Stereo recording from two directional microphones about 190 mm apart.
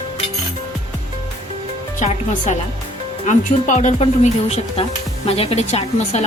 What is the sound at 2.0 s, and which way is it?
A woman's voice, 40° left (ahead or behind).